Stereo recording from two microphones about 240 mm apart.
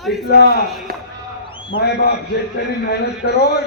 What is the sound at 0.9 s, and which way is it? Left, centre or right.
Speech, right.